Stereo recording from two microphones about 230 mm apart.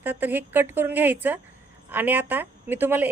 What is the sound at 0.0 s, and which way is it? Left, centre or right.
A woman's voice, centre.